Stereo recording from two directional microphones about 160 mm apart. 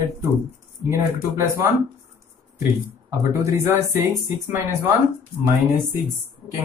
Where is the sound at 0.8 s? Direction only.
15° right (ahead or behind).